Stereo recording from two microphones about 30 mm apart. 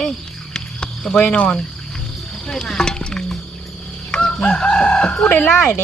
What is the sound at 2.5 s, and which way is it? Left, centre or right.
Speech, left.